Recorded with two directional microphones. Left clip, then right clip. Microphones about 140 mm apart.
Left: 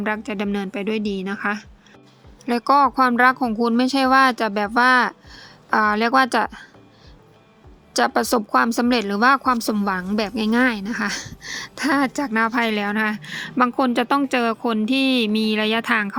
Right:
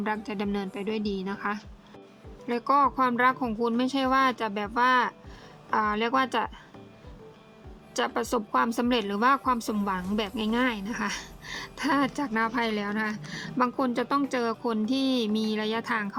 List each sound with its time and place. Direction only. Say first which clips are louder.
0.0 s a woman's voice: left 6 dB; 25° left (ahead or behind)
2.5 s speech: left 7 dB; 45° left (ahead or behind)
7.9 s speech: left 9 dB; 45° left (ahead or behind)